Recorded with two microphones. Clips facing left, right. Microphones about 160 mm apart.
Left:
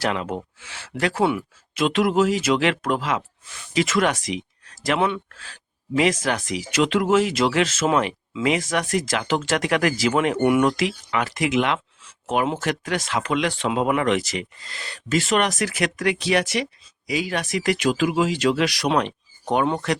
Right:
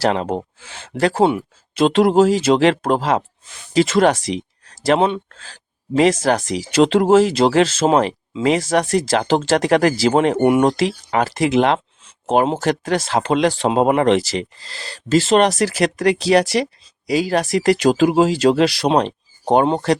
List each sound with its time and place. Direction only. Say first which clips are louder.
0.0 s speech: right 6 dB; 35° right (ahead or behind)